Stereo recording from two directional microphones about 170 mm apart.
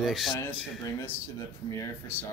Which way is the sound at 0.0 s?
Centre (ahead or behind).